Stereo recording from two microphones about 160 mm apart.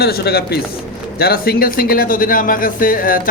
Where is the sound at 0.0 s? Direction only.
75° left (ahead or behind).